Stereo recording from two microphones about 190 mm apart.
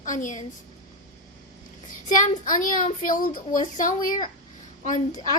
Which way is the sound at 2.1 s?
45° left (ahead or behind).